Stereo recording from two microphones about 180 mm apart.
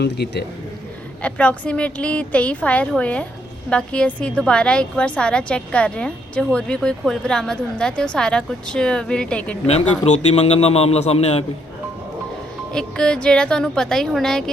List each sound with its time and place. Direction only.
0.0 s a man's voice: 65° left (ahead or behind)
1.2 s a woman's voice: 5° left (ahead or behind)
10.1 s speech: 35° left (ahead or behind)
12.7 s a woman's voice: 5° left (ahead or behind)